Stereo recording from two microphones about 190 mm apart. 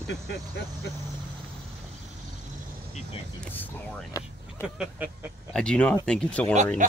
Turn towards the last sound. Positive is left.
turn(degrees=5)  # may be behind; listen again after turning